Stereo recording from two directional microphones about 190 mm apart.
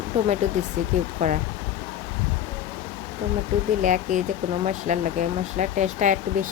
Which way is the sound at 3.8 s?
40° right (ahead or behind).